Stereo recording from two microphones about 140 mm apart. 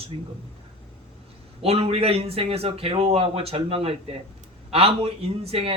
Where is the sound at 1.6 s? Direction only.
45° right (ahead or behind).